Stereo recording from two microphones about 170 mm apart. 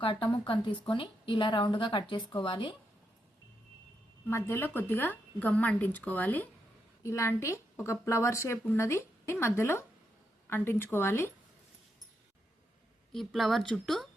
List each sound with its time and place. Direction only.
0.0 s a woman's voice: 30° left (ahead or behind)
4.3 s speech: 15° left (ahead or behind)
13.1 s speech: centre (ahead or behind)